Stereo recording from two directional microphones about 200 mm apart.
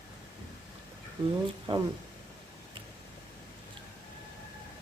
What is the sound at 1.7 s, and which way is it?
Speech, 25° right (ahead or behind).